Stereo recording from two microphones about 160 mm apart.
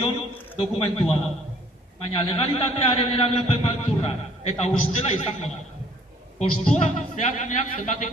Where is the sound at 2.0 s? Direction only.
35° left (ahead or behind).